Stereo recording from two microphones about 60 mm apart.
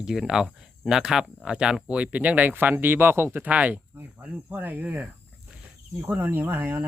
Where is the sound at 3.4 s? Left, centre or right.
Right.